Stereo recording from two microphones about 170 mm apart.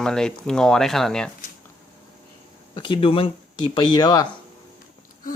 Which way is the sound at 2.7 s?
30° left (ahead or behind).